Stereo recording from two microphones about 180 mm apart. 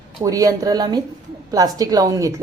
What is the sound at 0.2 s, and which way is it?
A woman's voice, 20° right (ahead or behind).